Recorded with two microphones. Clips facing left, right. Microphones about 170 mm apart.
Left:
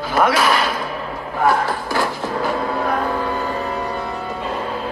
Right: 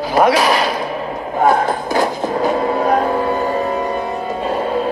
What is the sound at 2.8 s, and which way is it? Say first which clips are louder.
Music: right 5 dB; 35° right (ahead or behind).